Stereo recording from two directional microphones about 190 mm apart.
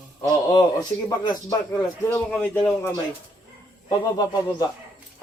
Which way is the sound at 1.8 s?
15° left (ahead or behind).